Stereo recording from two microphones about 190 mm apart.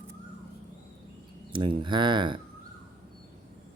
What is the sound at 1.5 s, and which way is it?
Speech, 25° right (ahead or behind).